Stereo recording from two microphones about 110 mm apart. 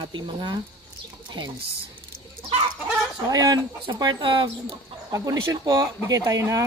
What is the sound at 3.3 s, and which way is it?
Speech, 35° right (ahead or behind).